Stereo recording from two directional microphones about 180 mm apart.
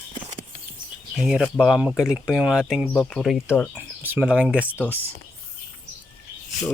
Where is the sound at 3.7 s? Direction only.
10° right (ahead or behind).